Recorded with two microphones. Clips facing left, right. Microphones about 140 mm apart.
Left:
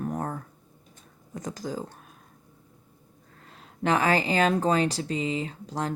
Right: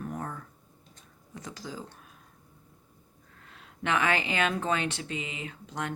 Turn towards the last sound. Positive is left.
turn(degrees=35)  # may be behind; listen again after turning